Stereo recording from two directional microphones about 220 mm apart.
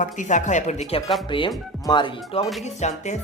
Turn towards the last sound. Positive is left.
turn(degrees=30)  # may be behind; listen again after turning